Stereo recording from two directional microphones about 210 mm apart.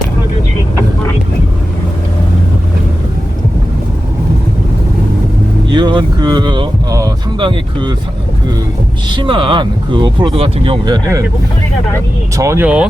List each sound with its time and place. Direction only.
5.7 s speech: 20° right (ahead or behind)
9.0 s speech: 25° right (ahead or behind)
12.4 s speech: 10° right (ahead or behind)